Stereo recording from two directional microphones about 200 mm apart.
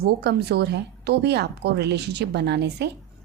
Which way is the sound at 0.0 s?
55° right (ahead or behind).